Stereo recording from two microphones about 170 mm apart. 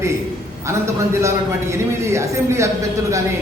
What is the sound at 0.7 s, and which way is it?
A man's voice, 15° right (ahead or behind).